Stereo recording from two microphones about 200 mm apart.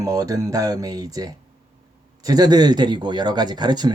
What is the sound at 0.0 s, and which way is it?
Speech, 15° right (ahead or behind).